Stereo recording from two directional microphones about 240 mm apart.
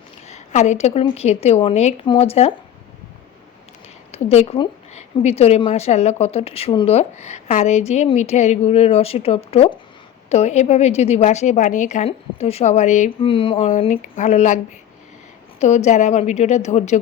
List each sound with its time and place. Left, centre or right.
0.3 s a woman's voice: left
4.1 s a woman's voice: left